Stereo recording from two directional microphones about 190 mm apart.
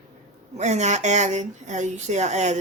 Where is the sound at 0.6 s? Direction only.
40° right (ahead or behind).